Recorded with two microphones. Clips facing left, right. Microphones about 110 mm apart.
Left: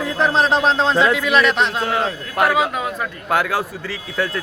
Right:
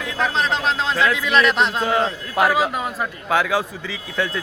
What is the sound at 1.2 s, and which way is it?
A man's voice, centre (ahead or behind).